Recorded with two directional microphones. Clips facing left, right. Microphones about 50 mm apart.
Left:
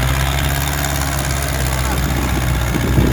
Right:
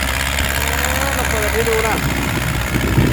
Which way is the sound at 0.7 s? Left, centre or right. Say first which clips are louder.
Right 3 dB; right.